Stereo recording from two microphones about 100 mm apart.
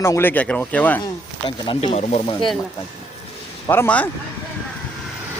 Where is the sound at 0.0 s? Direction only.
25° left (ahead or behind).